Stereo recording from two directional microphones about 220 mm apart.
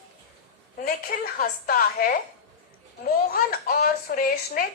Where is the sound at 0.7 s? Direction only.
40° left (ahead or behind).